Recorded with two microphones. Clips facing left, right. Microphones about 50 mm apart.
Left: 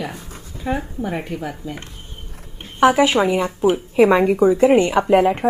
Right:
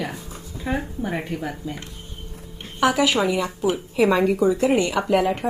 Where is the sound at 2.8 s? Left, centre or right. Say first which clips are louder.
Left 5 dB; left.